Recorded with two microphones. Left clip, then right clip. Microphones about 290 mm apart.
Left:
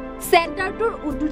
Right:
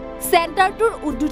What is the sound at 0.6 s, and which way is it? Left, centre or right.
Speech, right.